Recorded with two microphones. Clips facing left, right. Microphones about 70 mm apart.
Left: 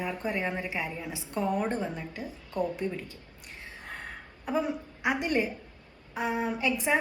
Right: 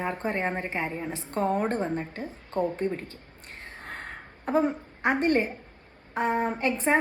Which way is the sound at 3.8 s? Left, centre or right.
Right.